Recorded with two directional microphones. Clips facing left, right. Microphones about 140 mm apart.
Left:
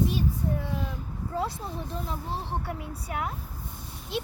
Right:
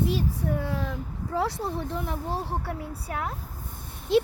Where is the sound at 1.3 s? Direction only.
80° right.